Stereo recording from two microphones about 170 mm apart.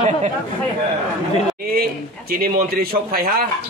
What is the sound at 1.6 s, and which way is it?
A man's voice, 60° right (ahead or behind).